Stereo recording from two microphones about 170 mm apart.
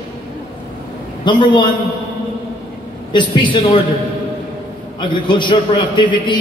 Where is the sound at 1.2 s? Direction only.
25° left (ahead or behind).